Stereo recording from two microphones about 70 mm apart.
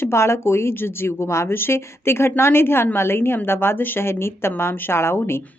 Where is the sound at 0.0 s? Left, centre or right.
Left.